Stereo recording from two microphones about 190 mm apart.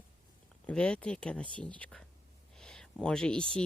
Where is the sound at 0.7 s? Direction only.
5° left (ahead or behind).